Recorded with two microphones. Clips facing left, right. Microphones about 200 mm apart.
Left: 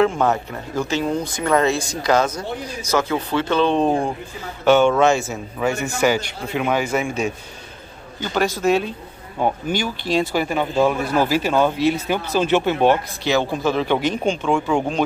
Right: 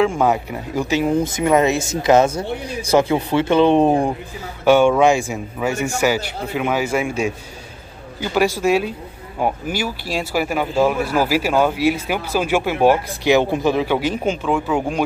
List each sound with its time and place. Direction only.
0.2 s speech: 10° right (ahead or behind); by 3.1 s 30° right (ahead or behind)
3.1 s speech: 15° right (ahead or behind)